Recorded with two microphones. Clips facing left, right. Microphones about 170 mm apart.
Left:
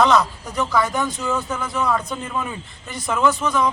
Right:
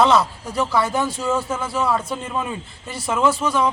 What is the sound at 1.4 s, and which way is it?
Speech, 30° right (ahead or behind).